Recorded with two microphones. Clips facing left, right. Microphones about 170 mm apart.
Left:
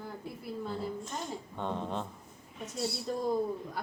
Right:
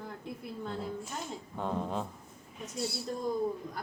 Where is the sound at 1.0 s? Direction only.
5° right (ahead or behind).